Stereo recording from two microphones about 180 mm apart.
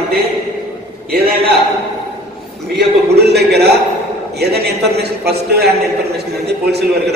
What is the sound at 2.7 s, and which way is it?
A man's voice, 65° right (ahead or behind).